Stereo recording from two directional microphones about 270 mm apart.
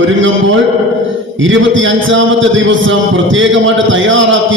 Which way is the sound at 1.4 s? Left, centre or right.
Right.